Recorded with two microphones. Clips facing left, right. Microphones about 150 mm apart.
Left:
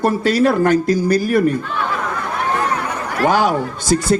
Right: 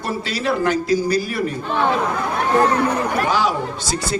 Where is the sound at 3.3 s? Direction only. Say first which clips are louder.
Left 4 dB; 50° left (ahead or behind).